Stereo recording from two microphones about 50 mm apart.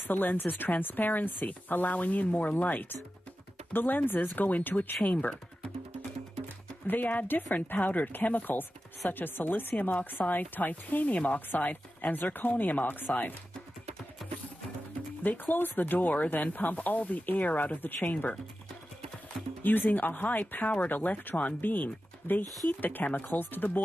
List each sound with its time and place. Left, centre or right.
0.1 s speech: left
6.9 s speech: left
15.2 s speech: left
18.1 s speech: left
19.6 s speech: left